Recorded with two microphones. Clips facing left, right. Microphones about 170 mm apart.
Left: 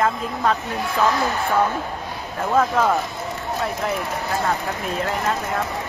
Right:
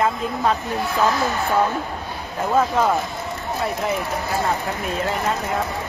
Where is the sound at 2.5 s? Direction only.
5° right (ahead or behind).